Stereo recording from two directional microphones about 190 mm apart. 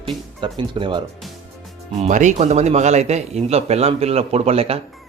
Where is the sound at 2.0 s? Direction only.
40° right (ahead or behind).